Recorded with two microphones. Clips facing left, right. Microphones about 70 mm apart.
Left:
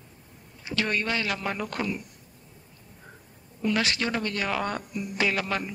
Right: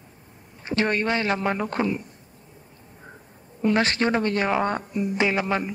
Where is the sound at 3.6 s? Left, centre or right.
Right.